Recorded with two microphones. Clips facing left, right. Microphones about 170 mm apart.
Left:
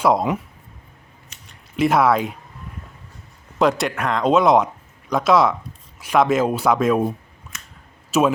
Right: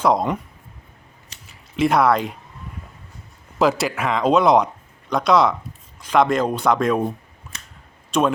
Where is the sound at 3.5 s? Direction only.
Centre (ahead or behind).